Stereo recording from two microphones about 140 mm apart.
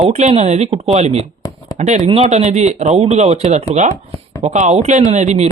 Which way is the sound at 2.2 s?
60° right (ahead or behind).